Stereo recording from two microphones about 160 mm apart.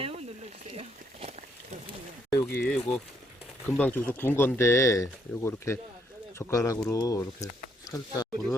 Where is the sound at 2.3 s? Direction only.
20° left (ahead or behind).